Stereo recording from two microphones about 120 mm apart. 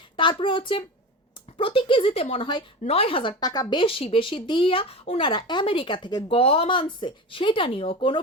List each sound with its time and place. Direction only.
0.2 s speech: 45° left (ahead or behind)
2.8 s speech: 55° left (ahead or behind); by 6.2 s 35° left (ahead or behind)
6.2 s speech: 50° left (ahead or behind)